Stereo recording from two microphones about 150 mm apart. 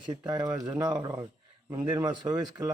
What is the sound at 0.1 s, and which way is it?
A man's voice, 25° right (ahead or behind).